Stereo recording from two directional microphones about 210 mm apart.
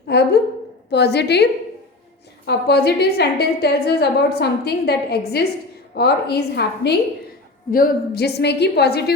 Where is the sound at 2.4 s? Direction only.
50° left (ahead or behind).